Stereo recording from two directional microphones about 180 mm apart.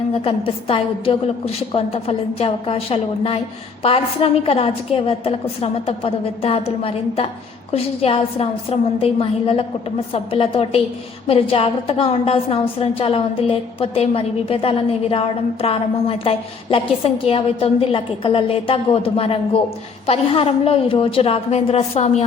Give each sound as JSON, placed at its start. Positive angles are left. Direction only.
{"t": 0.3, "sound": "a woman's voice", "side_deg": 30}
{"t": 10.1, "sound": "a woman's voice", "side_deg": 30}